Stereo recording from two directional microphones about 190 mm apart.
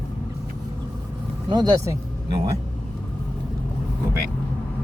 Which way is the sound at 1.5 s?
20° right (ahead or behind).